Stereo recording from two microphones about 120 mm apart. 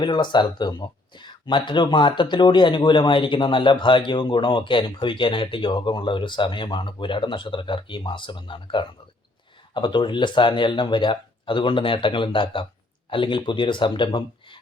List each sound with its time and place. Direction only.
0.0 s speech: 40° left (ahead or behind)